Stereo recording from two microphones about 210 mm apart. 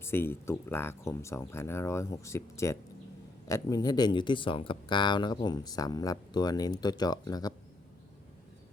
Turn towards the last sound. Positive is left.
turn(degrees=20)  # may be behind; listen again after turning